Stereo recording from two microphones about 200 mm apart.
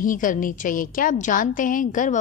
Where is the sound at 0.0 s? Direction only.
40° left (ahead or behind).